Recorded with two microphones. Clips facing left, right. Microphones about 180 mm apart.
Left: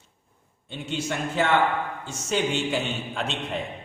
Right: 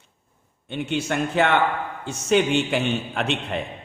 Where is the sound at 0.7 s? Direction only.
65° right (ahead or behind).